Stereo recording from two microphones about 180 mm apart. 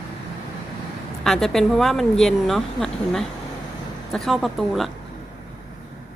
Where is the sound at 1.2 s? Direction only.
Centre (ahead or behind).